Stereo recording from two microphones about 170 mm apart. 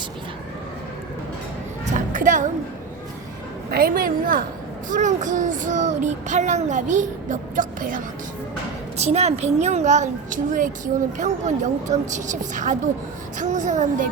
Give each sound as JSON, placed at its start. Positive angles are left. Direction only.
{"t": 1.8, "sound": "music", "side_deg": -50}
{"t": 3.7, "sound": "a woman's voice", "side_deg": -60}
{"t": 9.0, "sound": "a woman's voice", "side_deg": -40}